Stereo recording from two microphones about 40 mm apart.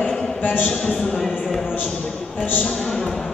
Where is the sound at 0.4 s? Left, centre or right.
Left.